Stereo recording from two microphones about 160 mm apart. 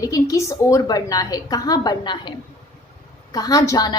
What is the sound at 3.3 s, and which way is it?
Speech, 25° left (ahead or behind).